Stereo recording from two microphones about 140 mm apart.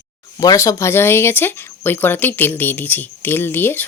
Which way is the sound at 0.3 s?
25° left (ahead or behind).